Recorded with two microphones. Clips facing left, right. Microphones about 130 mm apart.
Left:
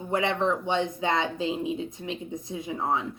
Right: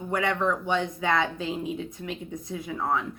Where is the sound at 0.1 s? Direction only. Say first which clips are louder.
Left 1 dB; 25° left (ahead or behind).